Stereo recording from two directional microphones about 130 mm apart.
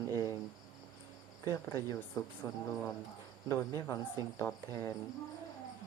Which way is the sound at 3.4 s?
20° left (ahead or behind).